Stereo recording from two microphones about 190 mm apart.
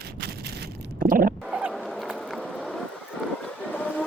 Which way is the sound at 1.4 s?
5° right (ahead or behind).